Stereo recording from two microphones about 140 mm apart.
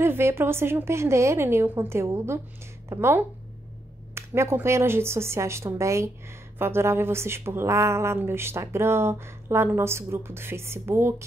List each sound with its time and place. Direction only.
0.0 s speech: 15° right (ahead or behind)